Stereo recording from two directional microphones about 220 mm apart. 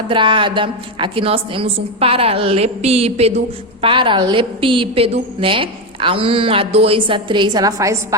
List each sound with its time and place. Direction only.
0.1 s a woman's voice: 20° right (ahead or behind)